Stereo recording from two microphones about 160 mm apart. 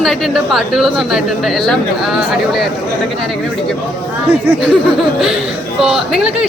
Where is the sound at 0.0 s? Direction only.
Centre (ahead or behind).